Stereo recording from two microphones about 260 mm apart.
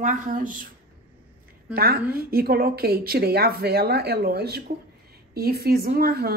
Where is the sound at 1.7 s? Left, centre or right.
Right.